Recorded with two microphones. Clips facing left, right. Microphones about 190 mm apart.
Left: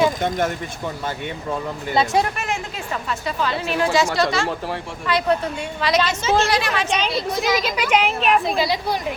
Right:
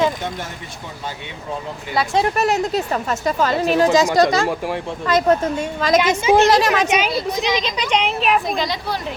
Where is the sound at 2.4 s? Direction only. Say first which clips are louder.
Right 9 dB; 40° right (ahead or behind).